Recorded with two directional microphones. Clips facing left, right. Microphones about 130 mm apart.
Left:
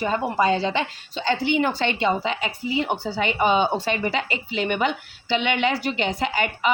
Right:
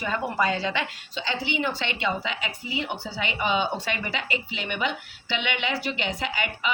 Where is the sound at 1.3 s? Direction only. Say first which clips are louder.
Left 7 dB; 50° left (ahead or behind).